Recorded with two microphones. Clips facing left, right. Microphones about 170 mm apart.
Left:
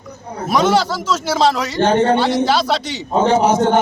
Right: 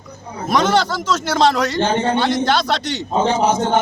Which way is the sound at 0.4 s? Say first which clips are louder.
Left 1 dB; 5° left (ahead or behind).